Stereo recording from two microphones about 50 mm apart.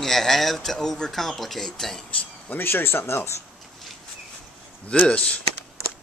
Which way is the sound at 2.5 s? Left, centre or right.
Left.